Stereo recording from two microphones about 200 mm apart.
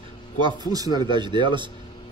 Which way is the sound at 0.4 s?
20° right (ahead or behind).